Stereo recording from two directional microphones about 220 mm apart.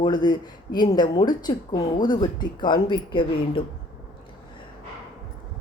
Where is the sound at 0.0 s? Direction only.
20° left (ahead or behind).